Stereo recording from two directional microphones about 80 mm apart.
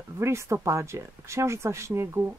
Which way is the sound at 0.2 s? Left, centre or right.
Right.